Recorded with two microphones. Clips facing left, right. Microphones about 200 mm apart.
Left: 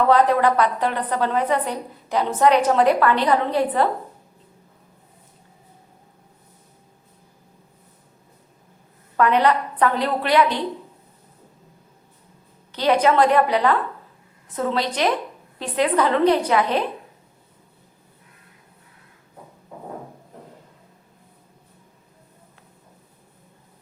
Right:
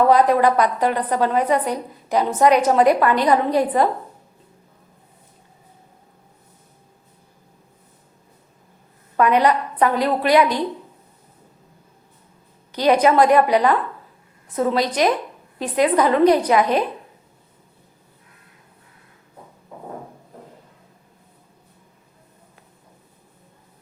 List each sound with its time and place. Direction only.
0.1 s a woman's voice: 10° right (ahead or behind)
9.1 s a woman's voice: 10° right (ahead or behind)
12.7 s a woman's voice: 10° right (ahead or behind)